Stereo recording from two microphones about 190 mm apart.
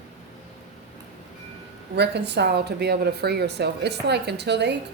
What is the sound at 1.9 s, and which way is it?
A woman's voice, 60° right (ahead or behind).